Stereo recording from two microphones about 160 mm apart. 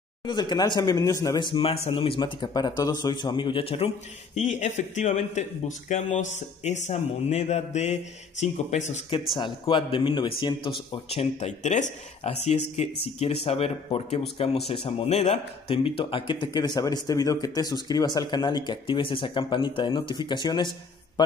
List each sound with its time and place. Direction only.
0.2 s speech: 25° left (ahead or behind)
4.4 s speech: 50° left (ahead or behind)
9.4 s a man's voice: 30° left (ahead or behind)